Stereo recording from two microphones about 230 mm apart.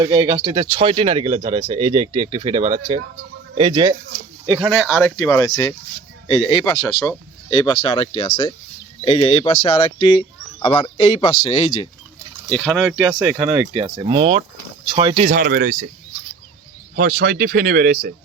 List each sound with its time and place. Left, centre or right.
0.0 s speech: centre
4.4 s speech: centre
4.9 s speech: centre; by 11.9 s left
12.5 s speech: centre
13.7 s speech: right
15.3 s speech: right
16.9 s speech: right